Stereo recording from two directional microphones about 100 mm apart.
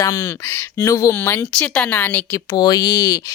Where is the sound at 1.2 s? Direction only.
20° left (ahead or behind).